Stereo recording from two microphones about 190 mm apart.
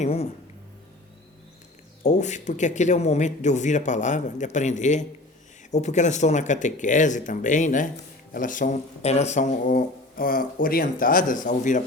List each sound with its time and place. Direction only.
0.0 s speech: 35° left (ahead or behind)
2.0 s speech: 40° left (ahead or behind)